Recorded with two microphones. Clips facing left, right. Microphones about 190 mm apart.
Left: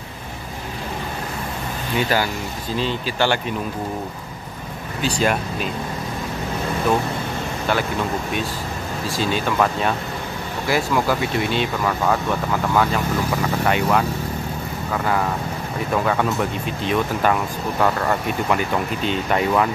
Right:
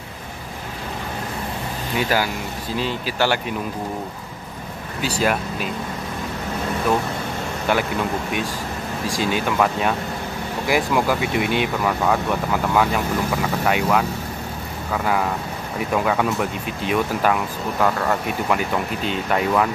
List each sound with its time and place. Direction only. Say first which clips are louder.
2.0 s speech: left 1 dB; 10° right (ahead or behind)
5.0 s speech: left 1 dB; 5° right (ahead or behind)
9.0 s speech: even; 15° right (ahead or behind)
15.9 s speech: even; 5° right (ahead or behind)